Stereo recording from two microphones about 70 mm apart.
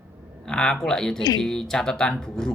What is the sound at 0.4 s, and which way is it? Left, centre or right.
Speech, centre.